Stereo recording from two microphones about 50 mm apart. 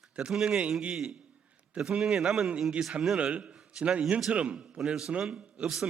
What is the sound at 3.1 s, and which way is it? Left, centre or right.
A man's voice, right.